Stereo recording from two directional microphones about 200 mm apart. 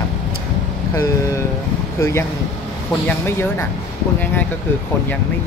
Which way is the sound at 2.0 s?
15° left (ahead or behind).